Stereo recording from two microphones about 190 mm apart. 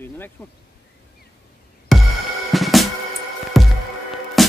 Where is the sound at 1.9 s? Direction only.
Centre (ahead or behind).